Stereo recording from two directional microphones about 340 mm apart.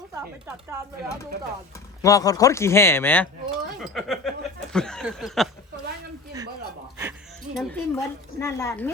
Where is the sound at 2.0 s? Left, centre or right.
Centre.